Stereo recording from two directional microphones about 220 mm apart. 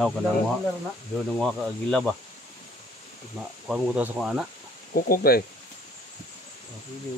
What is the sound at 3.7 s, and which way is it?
Speech, 5° right (ahead or behind).